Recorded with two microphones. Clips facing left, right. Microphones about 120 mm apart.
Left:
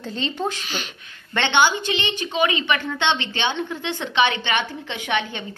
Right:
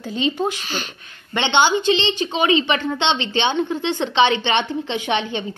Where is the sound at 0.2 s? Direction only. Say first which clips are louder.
Right 5 dB; 15° right (ahead or behind).